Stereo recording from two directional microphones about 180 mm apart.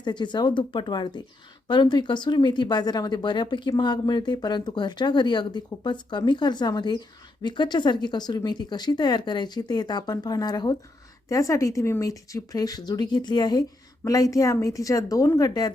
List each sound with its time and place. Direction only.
0.0 s speech: 25° left (ahead or behind)